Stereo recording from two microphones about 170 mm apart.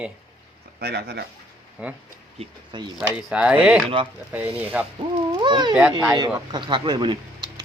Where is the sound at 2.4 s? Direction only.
25° right (ahead or behind).